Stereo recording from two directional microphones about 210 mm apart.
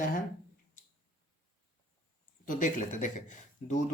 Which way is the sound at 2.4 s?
40° left (ahead or behind).